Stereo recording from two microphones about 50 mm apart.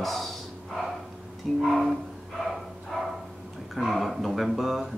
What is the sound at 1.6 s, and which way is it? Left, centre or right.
Speech, centre.